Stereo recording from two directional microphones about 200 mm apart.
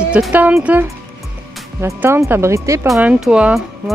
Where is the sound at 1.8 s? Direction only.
15° right (ahead or behind).